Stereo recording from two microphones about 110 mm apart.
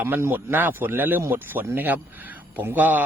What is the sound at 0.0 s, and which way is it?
Speech, 20° right (ahead or behind).